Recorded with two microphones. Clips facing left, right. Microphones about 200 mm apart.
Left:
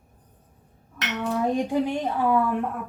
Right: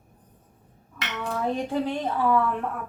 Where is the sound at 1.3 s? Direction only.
10° left (ahead or behind).